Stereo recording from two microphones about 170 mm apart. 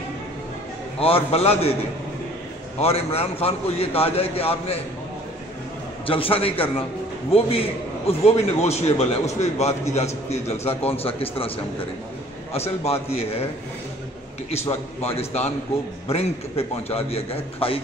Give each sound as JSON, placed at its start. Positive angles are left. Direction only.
{"t": 0.9, "sound": "a man's voice", "side_deg": 35}
{"t": 2.8, "sound": "a man's voice", "side_deg": 35}
{"t": 6.0, "sound": "a man's voice", "side_deg": 30}
{"t": 14.5, "sound": "a man's voice", "side_deg": 40}